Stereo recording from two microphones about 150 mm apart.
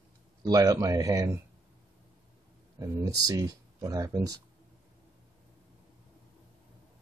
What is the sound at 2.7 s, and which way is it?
Speech, 25° right (ahead or behind).